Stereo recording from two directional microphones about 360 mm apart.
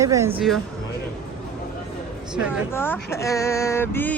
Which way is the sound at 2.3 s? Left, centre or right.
Centre.